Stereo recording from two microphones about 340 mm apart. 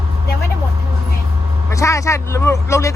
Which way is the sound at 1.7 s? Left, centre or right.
Centre.